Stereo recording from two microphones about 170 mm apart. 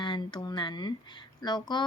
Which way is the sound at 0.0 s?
25° left (ahead or behind).